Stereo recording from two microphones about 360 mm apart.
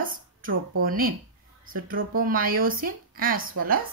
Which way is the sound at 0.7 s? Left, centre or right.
Right.